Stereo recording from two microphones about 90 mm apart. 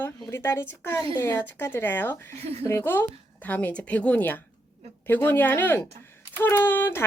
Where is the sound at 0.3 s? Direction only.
30° left (ahead or behind).